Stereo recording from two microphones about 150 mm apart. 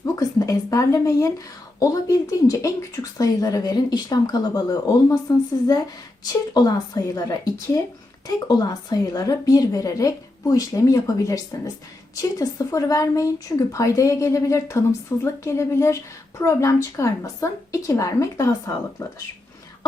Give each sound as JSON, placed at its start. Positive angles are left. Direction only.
{"t": 0.0, "sound": "speech", "side_deg": 20}
{"t": 6.2, "sound": "speech", "side_deg": 25}